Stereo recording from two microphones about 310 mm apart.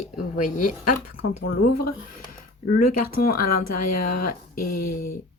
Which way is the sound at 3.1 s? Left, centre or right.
Left.